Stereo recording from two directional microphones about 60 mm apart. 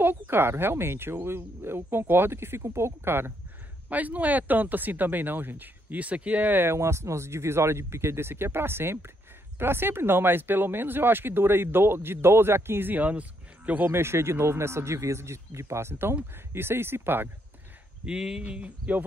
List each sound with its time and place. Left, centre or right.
0.0 s speech: right
3.9 s speech: right
12.9 s speech: right
13.8 s speech: right
18.0 s speech: centre